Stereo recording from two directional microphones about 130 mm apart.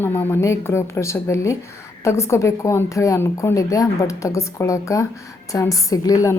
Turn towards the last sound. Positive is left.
turn(degrees=25)  # may be behind; listen again after turning